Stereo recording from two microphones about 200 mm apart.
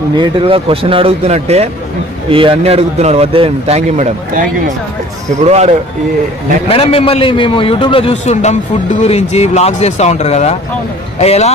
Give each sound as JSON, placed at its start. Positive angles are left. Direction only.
{"t": 0.2, "sound": "a man's voice", "side_deg": -25}
{"t": 5.5, "sound": "a man's voice", "side_deg": -30}
{"t": 6.7, "sound": "a man's voice", "side_deg": 30}